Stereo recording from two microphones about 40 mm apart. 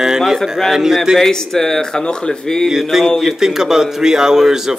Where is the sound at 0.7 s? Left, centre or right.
Centre.